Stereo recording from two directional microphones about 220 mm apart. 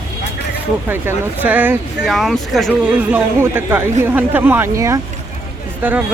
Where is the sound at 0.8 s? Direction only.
10° right (ahead or behind).